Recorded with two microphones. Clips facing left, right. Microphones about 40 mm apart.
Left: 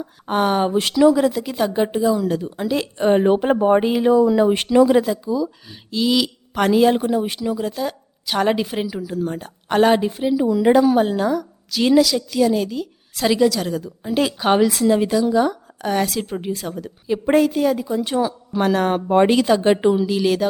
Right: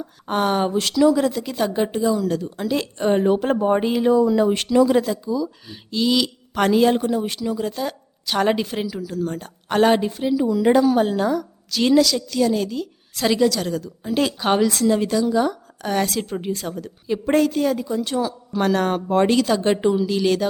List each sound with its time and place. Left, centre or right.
0.0 s a woman's voice: centre
0.7 s a woman's voice: centre
3.1 s a woman's voice: left
5.6 s a woman's voice: centre
19.0 s a woman's voice: centre